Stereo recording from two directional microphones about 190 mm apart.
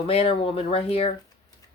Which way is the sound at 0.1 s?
30° left (ahead or behind).